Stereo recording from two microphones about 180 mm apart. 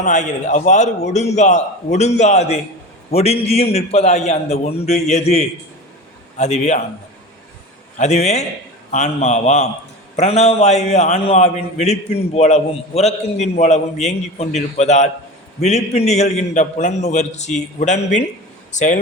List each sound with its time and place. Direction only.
0.0 s a man's voice: 45° left (ahead or behind)
7.9 s a man's voice: 40° left (ahead or behind)